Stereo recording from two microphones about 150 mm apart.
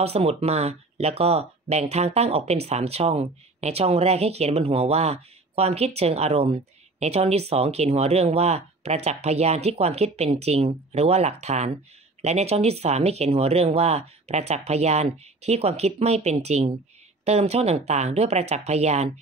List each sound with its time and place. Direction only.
0.0 s speech: 45° right (ahead or behind)